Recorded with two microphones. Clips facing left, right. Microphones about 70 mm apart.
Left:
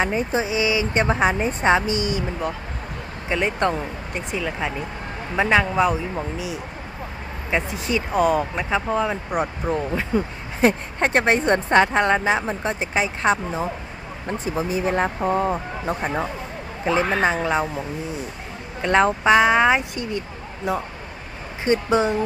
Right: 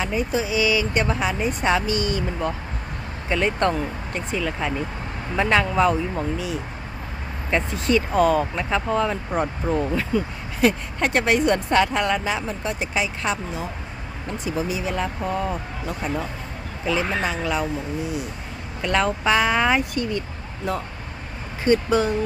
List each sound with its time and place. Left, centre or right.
0.0 s speech: left
10.1 s speech: left
18.8 s speech: left